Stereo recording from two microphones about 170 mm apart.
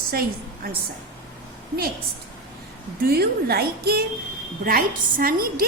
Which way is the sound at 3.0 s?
65° right (ahead or behind).